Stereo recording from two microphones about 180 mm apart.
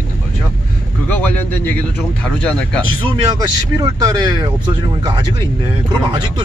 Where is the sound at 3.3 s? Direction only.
20° right (ahead or behind).